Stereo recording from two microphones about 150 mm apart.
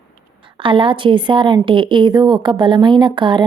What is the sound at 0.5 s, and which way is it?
A woman's voice, 35° right (ahead or behind).